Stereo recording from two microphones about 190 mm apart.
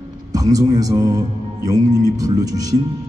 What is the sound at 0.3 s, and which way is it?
A man's voice, 20° right (ahead or behind).